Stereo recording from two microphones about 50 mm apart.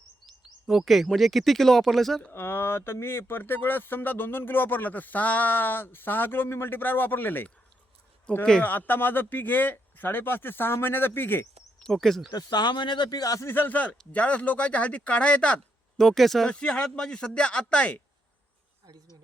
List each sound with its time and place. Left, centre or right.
0.3 s speech: centre
2.3 s speech: left
8.3 s speech: left
8.6 s speech: left
11.9 s speech: centre
13.5 s a man's voice: left
16.0 s speech: centre
16.5 s speech: centre